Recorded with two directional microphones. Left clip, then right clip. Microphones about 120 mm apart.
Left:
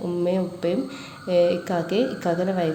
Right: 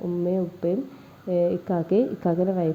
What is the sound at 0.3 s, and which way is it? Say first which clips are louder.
A woman's voice: left 1 dB; 40° right (ahead or behind).